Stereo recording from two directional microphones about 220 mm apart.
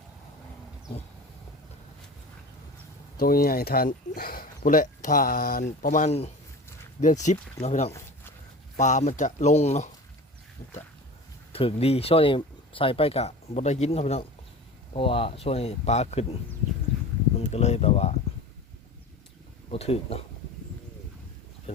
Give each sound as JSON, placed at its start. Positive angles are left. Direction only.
{"t": 3.2, "sound": "speech", "side_deg": 40}
{"t": 11.5, "sound": "speech", "side_deg": 25}
{"t": 17.3, "sound": "speech", "side_deg": 30}
{"t": 19.7, "sound": "speech", "side_deg": 25}